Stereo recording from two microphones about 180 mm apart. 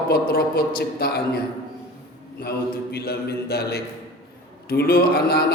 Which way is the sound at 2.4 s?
60° left (ahead or behind).